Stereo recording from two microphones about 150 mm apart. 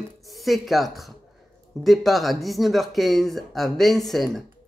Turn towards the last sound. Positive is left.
turn(degrees=0)  # may be behind; listen again after turning